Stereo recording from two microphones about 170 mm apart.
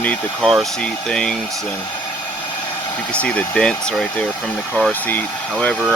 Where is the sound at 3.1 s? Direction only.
5° left (ahead or behind).